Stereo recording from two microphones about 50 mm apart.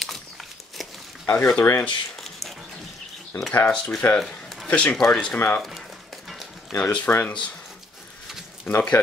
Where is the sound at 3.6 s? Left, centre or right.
Centre.